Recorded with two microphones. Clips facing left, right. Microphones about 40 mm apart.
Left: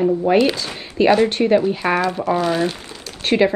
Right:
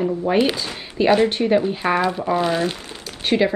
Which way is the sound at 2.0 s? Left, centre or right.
Centre.